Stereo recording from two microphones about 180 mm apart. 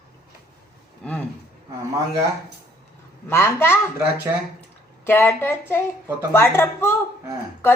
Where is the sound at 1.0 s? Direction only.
5° left (ahead or behind).